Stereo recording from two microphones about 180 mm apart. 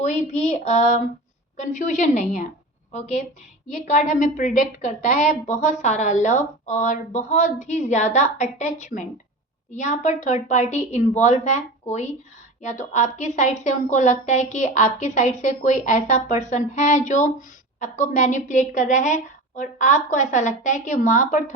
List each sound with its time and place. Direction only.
0.0 s a woman's voice: 40° left (ahead or behind)